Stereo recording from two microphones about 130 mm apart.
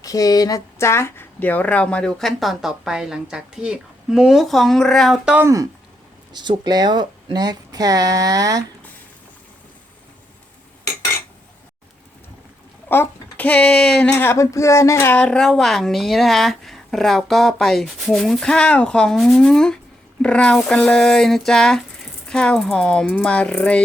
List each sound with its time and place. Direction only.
0.0 s speech: 25° left (ahead or behind); by 5.3 s centre (ahead or behind)
5.3 s speech: 20° right (ahead or behind)
6.3 s speech: 35° right (ahead or behind)
12.9 s a child's voice: 15° left (ahead or behind)
14.1 s speech: 20° left (ahead or behind)